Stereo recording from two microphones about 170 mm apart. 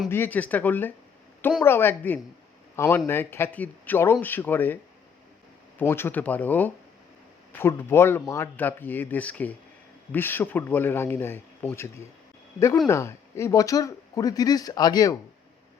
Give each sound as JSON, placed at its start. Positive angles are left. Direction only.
{"t": 0.1, "sound": "speech", "side_deg": 10}
{"t": 5.8, "sound": "speech", "side_deg": 15}